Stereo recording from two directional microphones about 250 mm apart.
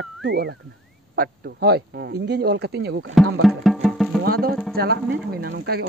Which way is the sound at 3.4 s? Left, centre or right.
Centre.